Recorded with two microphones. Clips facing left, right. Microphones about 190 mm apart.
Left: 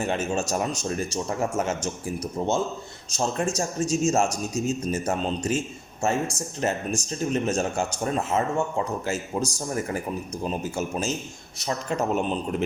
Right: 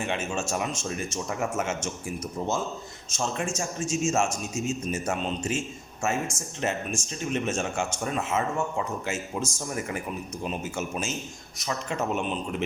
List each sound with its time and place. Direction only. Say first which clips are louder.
0.0 s a man's voice: left 4 dB; 40° left (ahead or behind)